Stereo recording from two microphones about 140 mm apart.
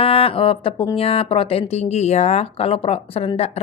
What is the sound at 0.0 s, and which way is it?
Speech, 40° left (ahead or behind).